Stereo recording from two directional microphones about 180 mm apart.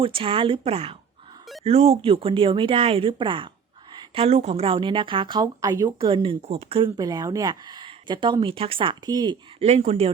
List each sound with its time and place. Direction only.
0.0 s a woman's voice: 30° right (ahead or behind)
9.6 s speech: 35° right (ahead or behind)